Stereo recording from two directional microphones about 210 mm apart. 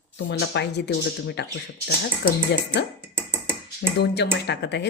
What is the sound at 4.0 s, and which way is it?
Speech, 50° left (ahead or behind).